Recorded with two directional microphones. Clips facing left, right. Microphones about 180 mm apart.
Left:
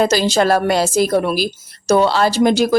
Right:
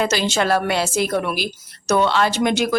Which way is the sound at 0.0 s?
40° left (ahead or behind).